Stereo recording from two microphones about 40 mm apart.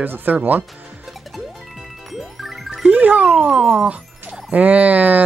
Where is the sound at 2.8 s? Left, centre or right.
Right.